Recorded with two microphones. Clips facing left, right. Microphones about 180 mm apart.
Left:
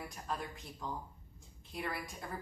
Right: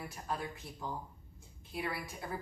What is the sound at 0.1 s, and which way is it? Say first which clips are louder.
A woman's voice: right 2 dB; 5° right (ahead or behind).